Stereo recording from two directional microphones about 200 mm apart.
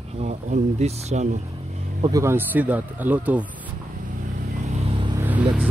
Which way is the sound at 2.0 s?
20° right (ahead or behind).